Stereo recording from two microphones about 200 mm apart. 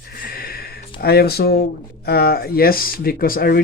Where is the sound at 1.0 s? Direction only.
50° left (ahead or behind).